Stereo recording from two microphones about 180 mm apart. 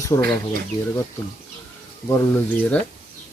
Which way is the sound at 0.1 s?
25° left (ahead or behind).